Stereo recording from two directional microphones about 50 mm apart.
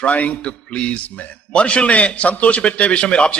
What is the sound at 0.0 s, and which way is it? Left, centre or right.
A man's voice, left.